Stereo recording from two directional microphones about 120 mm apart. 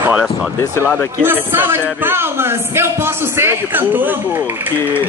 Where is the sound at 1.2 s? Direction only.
20° right (ahead or behind).